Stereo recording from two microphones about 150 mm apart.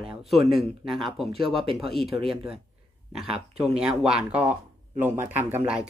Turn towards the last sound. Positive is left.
turn(degrees=-10)  # may be behind; listen again after turning